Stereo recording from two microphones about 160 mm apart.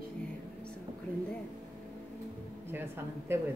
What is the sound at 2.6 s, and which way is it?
Speech, 15° right (ahead or behind).